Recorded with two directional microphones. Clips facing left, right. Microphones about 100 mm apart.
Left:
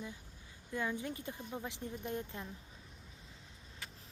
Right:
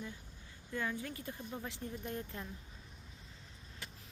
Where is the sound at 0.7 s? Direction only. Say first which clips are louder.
Left 1 dB; 15° left (ahead or behind).